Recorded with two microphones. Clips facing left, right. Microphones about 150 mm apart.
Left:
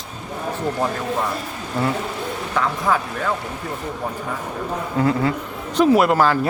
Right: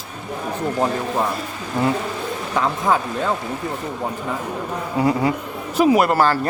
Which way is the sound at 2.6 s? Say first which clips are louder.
Right 1 dB; 20° right (ahead or behind).